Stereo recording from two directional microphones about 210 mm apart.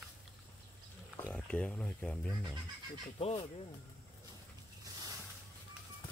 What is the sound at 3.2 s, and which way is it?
Speech, 30° left (ahead or behind).